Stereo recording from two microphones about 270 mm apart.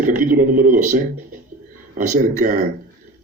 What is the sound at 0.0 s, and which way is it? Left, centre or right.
A man's voice, right.